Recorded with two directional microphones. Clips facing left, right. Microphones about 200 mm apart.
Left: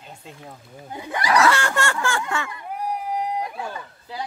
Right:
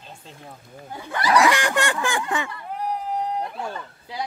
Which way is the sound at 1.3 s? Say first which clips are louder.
Even; 15° right (ahead or behind).